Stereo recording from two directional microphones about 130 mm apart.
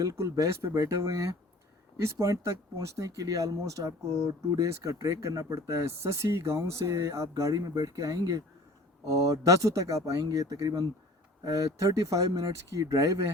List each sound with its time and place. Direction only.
0.0 s speech: 25° right (ahead or behind)